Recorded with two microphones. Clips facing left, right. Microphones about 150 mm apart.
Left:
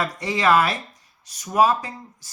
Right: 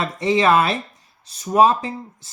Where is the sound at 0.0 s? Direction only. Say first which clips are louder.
Right 4 dB; 25° right (ahead or behind).